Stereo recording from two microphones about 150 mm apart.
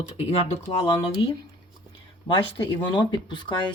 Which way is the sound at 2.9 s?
30° left (ahead or behind).